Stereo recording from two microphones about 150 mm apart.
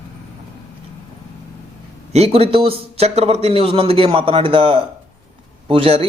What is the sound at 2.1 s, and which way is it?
A man's voice, 40° right (ahead or behind).